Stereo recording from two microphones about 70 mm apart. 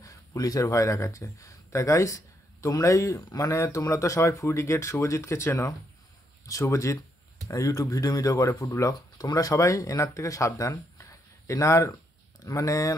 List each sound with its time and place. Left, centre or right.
0.0 s speech: left